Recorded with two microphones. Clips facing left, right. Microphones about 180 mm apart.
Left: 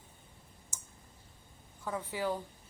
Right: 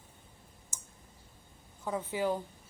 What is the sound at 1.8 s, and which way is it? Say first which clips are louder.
Speech: right 3 dB; 20° right (ahead or behind).